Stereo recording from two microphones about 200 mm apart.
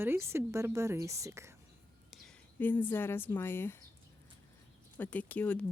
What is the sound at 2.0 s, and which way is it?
Speech, centre (ahead or behind).